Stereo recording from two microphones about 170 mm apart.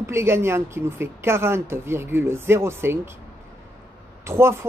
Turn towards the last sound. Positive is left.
turn(degrees=-15)  # may be behind; listen again after turning